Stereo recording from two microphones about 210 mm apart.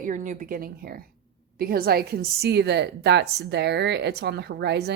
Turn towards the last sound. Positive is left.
turn(degrees=-50)  # may be behind; listen again after turning